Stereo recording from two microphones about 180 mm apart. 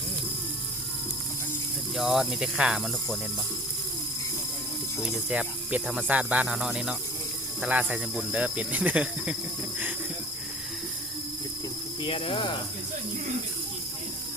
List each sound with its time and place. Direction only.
2.0 s snake: centre (ahead or behind)
5.3 s snake: 5° right (ahead or behind)
12.0 s cricket: 30° left (ahead or behind)